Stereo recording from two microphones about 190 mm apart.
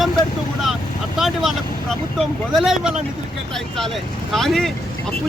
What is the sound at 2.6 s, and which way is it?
Speech, centre (ahead or behind).